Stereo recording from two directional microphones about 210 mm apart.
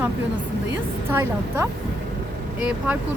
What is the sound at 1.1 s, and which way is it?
Speech, 10° right (ahead or behind).